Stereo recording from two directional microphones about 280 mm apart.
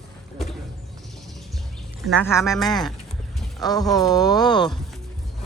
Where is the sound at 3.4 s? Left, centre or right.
Centre.